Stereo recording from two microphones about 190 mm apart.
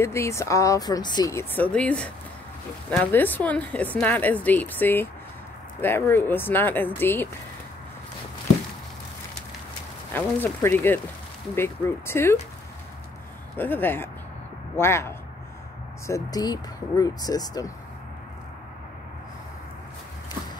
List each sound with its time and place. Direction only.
0.0 s speech: 15° left (ahead or behind)
10.1 s speech: 10° left (ahead or behind)
13.6 s speech: 10° left (ahead or behind)